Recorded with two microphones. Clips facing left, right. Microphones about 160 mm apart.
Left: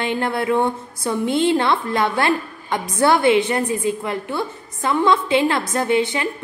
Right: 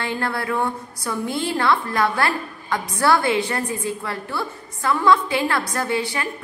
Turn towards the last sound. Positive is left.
turn(degrees=20)  # may be behind; listen again after turning